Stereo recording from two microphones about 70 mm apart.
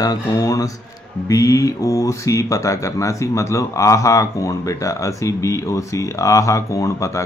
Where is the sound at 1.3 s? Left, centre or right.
Left.